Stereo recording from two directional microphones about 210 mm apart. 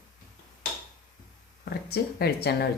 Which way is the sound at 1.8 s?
50° left (ahead or behind).